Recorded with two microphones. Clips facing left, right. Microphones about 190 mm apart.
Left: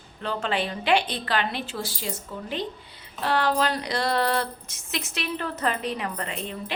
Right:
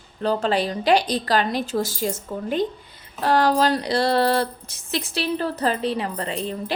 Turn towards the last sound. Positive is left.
turn(degrees=-35)  # may be behind; listen again after turning